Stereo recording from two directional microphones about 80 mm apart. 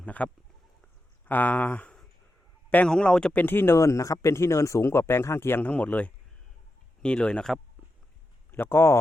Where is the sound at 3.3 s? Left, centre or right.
Left.